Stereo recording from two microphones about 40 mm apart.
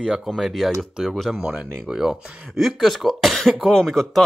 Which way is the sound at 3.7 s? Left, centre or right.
Centre.